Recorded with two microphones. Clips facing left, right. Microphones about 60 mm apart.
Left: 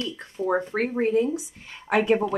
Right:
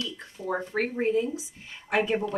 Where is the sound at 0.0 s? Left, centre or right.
Left.